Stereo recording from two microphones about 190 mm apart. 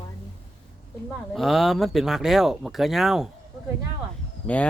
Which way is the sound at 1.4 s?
Centre (ahead or behind).